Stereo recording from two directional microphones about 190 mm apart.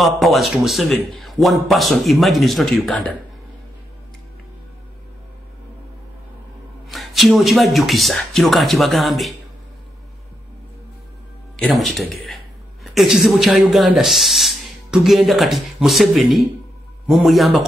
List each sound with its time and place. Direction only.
0.0 s speech: centre (ahead or behind)
6.9 s speech: centre (ahead or behind)
11.5 s speech: 5° left (ahead or behind)